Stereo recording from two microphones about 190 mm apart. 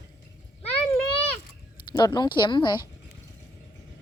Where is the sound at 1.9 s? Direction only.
20° left (ahead or behind).